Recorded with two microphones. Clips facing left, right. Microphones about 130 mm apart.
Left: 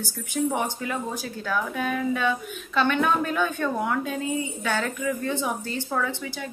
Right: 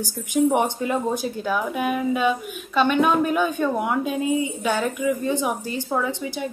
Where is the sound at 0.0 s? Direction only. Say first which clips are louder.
Right 6 dB; 15° right (ahead or behind).